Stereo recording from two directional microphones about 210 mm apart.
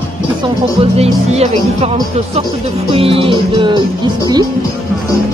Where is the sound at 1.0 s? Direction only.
30° right (ahead or behind).